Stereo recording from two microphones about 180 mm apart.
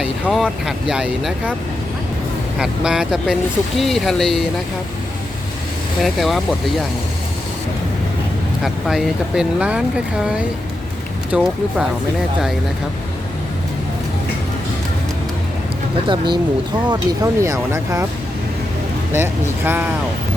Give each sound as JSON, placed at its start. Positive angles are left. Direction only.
{"t": 0.0, "sound": "speech", "side_deg": -5}
{"t": 2.6, "sound": "speech", "side_deg": -5}
{"t": 6.0, "sound": "speech", "side_deg": 0}
{"t": 8.6, "sound": "speech", "side_deg": 0}
{"t": 16.0, "sound": "speech", "side_deg": -25}
{"t": 19.1, "sound": "speech", "side_deg": -10}